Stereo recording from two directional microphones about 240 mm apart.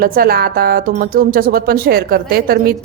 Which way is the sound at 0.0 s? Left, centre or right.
Right.